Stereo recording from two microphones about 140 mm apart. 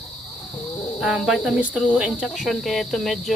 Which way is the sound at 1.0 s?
5° right (ahead or behind).